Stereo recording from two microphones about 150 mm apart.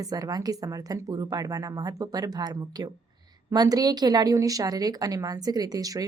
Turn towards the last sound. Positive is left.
turn(degrees=-25)  # may be behind; listen again after turning